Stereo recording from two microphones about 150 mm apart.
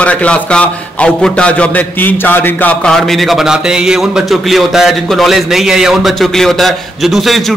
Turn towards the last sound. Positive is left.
turn(degrees=0)  # may be behind; listen again after turning